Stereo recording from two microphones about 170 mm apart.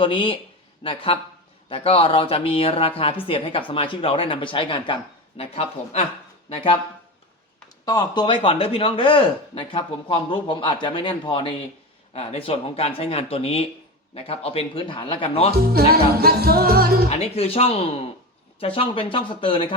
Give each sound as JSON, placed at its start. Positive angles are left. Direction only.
{"t": 0.0, "sound": "speech", "side_deg": 30}
{"t": 7.9, "sound": "speech", "side_deg": 25}
{"t": 15.5, "sound": "speech", "side_deg": -65}
{"t": 15.9, "sound": "music", "side_deg": -65}
{"t": 17.1, "sound": "speech", "side_deg": 35}